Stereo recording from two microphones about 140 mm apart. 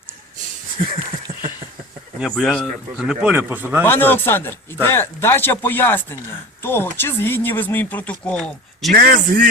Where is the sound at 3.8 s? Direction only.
15° left (ahead or behind).